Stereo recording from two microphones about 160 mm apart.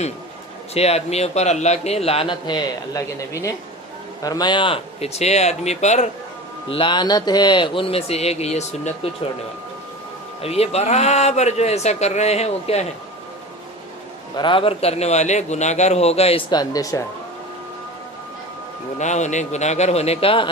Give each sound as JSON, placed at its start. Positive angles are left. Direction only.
{"t": 0.7, "sound": "a man's voice", "side_deg": 40}
{"t": 6.7, "sound": "a man's voice", "side_deg": 30}
{"t": 10.4, "sound": "speech", "side_deg": 40}
{"t": 14.3, "sound": "a man's voice", "side_deg": 30}
{"t": 16.5, "sound": "speech", "side_deg": 25}
{"t": 18.9, "sound": "speech", "side_deg": 45}